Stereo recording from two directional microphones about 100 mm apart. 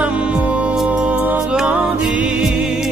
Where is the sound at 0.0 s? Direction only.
10° right (ahead or behind).